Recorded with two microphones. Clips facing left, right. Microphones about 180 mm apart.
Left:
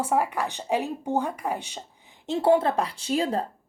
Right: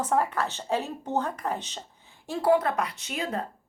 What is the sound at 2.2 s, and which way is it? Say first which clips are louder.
Speech: left 2 dB; 25° left (ahead or behind).